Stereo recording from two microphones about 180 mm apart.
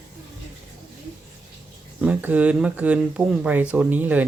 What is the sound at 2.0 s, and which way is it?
Speech, 10° right (ahead or behind).